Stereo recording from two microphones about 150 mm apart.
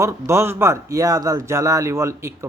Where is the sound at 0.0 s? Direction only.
15° right (ahead or behind).